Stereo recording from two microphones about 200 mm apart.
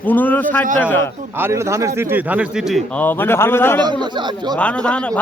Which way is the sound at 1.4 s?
15° right (ahead or behind).